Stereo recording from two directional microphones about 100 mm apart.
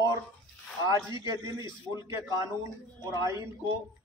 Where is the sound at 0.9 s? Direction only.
30° right (ahead or behind).